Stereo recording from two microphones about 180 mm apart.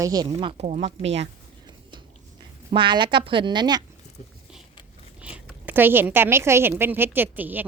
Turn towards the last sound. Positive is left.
turn(degrees=-10)  # may be behind; listen again after turning